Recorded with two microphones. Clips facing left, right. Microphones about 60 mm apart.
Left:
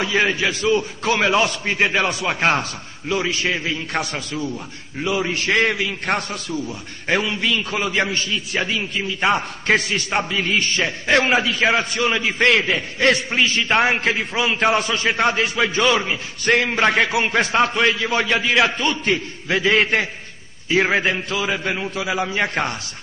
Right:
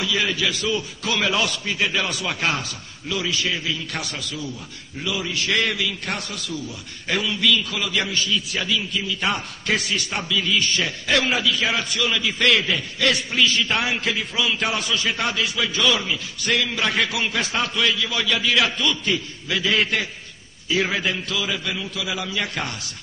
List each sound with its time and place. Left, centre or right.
0.0 s a man's voice: left